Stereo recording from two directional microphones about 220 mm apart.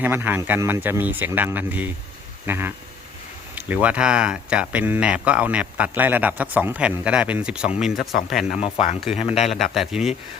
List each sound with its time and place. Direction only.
0.0 s speech: 10° right (ahead or behind)
8.6 s speech: 25° left (ahead or behind)
9.7 s speech: centre (ahead or behind)